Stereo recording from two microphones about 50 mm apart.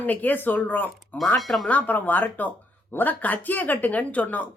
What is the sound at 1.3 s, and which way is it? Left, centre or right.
Speech, centre.